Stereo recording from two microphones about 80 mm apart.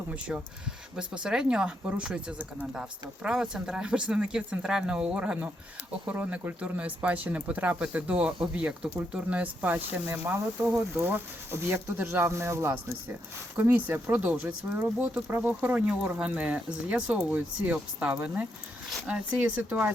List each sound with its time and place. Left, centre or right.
0.1 s speech: centre